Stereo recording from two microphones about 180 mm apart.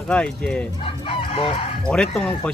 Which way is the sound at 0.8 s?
30° left (ahead or behind).